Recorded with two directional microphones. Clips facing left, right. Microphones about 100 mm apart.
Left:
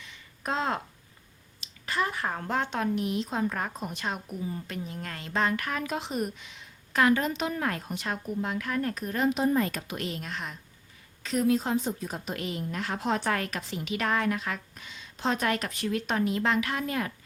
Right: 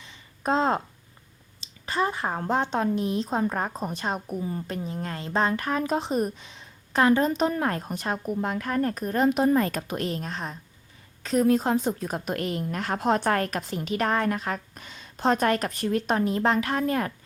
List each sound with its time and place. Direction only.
0.0 s a sound: 30° right (ahead or behind)
1.6 s speech: 25° right (ahead or behind)
4.9 s speech: 30° right (ahead or behind)
8.2 s a woman's voice: 50° right (ahead or behind)